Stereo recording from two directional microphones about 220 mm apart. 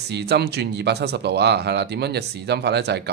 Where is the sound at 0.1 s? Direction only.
50° right (ahead or behind).